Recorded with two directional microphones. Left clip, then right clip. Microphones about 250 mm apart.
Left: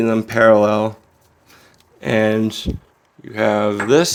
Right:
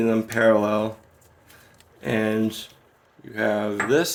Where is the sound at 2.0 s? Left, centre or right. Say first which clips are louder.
Left 7 dB; left.